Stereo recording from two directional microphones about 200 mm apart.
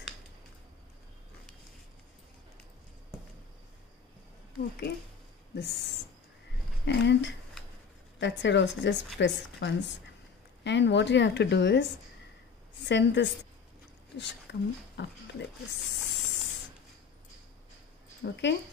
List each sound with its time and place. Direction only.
5.6 s a woman's voice: 55° left (ahead or behind)
12.8 s a woman's voice: 60° left (ahead or behind)
18.2 s a woman's voice: 60° left (ahead or behind)